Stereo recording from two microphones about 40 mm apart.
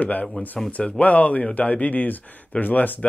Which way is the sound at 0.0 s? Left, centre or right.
Left.